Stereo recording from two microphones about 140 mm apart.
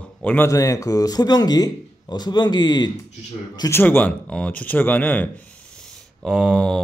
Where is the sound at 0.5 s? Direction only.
25° left (ahead or behind).